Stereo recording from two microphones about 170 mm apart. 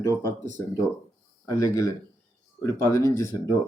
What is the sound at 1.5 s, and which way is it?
Speech, 20° left (ahead or behind).